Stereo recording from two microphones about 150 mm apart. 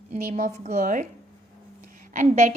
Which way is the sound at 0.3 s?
55° right (ahead or behind).